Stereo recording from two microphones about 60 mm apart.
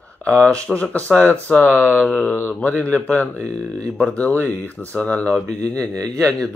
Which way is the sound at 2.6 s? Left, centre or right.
Left.